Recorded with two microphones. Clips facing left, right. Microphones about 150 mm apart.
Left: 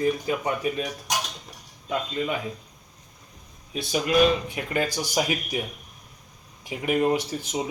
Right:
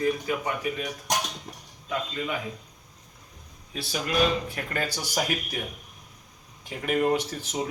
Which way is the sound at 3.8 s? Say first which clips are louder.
Left 5 dB; 15° left (ahead or behind).